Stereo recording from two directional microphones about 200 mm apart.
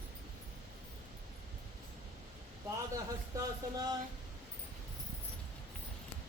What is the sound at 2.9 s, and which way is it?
Speech, 20° right (ahead or behind).